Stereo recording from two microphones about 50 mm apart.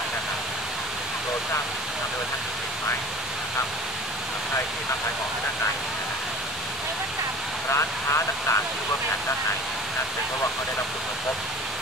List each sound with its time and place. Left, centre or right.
7.7 s speech: left